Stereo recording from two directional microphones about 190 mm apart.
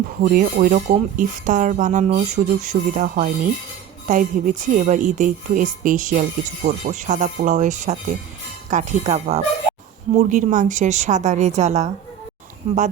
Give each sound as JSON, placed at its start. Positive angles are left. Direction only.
{"t": 0.2, "sound": "speech", "side_deg": -45}